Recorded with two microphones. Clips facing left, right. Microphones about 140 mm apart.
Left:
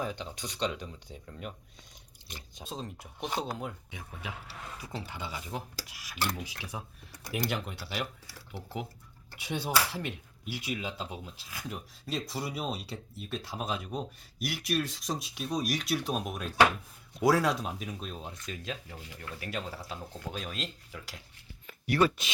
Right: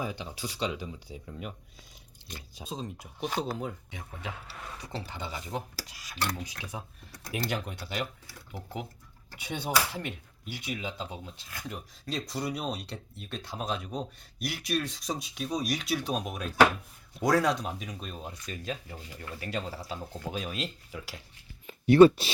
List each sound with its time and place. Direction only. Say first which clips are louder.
0.0 s speech: right 1 dB; 5° right (ahead or behind)
2.6 s speech: right 2 dB; centre (ahead or behind)
3.2 s speech: right 2 dB; 20° left (ahead or behind)
3.6 s speech: right 2 dB; 5° left (ahead or behind)
9.4 s speech: even; centre (ahead or behind)
21.7 s speech: right 10 dB; 25° right (ahead or behind)